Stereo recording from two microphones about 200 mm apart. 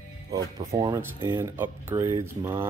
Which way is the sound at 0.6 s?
20° right (ahead or behind).